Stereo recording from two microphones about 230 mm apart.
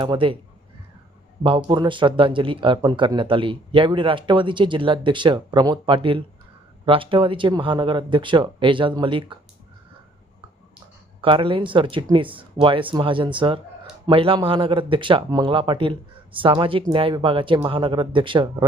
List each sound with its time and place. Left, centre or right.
0.0 s speech: right
1.5 s speech: right
11.2 s speech: right